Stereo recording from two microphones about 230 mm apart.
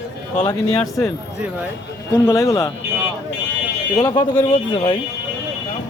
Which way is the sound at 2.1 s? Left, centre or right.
Centre.